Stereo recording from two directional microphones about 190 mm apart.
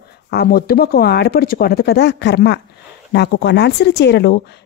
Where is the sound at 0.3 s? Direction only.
55° left (ahead or behind).